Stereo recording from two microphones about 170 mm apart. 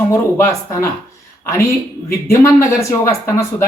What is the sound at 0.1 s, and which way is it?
Speech, 15° left (ahead or behind).